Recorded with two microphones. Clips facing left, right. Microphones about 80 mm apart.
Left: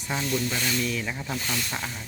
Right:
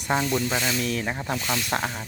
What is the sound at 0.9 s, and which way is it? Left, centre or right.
Speech, right.